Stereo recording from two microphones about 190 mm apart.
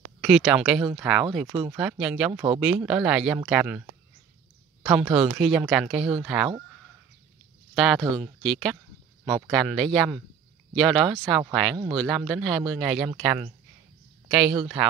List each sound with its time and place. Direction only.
0.2 s speech: 5° right (ahead or behind)
4.8 s speech: 5° right (ahead or behind)
7.7 s speech: centre (ahead or behind)
14.5 s speech: 20° right (ahead or behind)